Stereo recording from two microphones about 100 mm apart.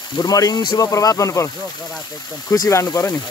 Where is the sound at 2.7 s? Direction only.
30° left (ahead or behind).